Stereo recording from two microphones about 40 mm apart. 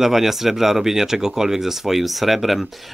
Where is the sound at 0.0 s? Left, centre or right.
Centre.